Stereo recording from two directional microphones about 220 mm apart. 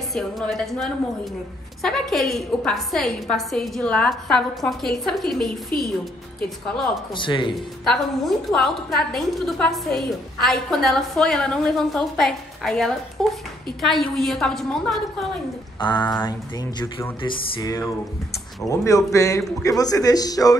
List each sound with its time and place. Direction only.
0.1 s a woman's voice: centre (ahead or behind)
7.2 s speech: 20° left (ahead or behind)
7.8 s a woman's voice: centre (ahead or behind)
15.8 s speech: 20° left (ahead or behind)
17.2 s a man's voice: 20° left (ahead or behind)